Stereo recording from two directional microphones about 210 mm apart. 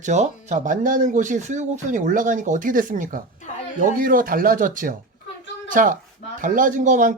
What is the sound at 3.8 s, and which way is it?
Speech, 40° right (ahead or behind).